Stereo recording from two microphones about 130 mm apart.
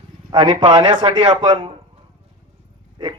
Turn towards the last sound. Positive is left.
turn(degrees=-35)  # may be behind; listen again after turning